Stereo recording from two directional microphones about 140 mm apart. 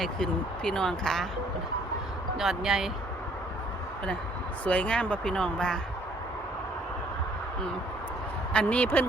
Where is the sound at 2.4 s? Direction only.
Centre (ahead or behind).